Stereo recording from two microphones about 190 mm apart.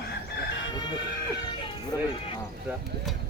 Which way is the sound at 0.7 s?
20° left (ahead or behind).